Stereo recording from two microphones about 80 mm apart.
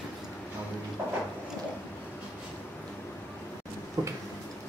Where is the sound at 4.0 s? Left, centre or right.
Right.